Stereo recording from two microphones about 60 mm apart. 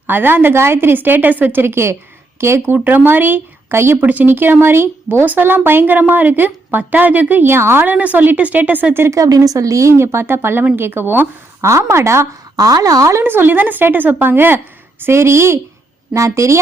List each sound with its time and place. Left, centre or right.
0.1 s a woman's voice: right
2.7 s a woman's voice: right
4.0 s a woman's voice: right
7.9 s speech: right
9.0 s speech: right
9.9 s a woman's voice: right
11.8 s speech: right
12.5 s speech: right
13.2 s a woman's voice: right
15.0 s speech: right